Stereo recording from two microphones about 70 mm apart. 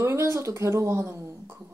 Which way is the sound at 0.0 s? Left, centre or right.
Right.